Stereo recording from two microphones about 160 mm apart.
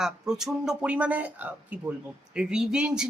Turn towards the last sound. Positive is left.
turn(degrees=-5)  # may be behind; listen again after turning